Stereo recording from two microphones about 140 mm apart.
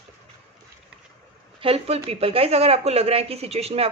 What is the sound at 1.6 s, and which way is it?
Speech, 45° right (ahead or behind).